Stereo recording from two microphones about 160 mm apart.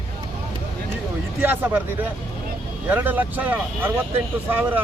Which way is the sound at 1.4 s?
10° right (ahead or behind).